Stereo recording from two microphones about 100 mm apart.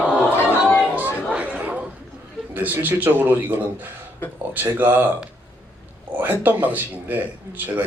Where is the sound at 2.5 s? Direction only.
20° right (ahead or behind).